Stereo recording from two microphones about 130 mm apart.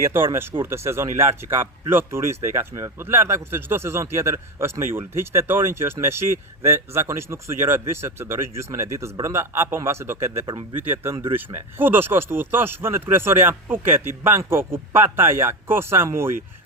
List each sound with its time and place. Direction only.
0.0 s a man's voice: 20° right (ahead or behind)